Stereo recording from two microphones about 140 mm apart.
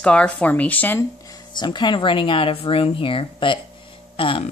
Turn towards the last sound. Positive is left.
turn(degrees=40)  # may be behind; listen again after turning